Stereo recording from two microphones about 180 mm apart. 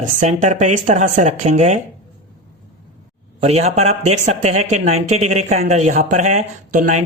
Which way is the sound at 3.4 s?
35° right (ahead or behind).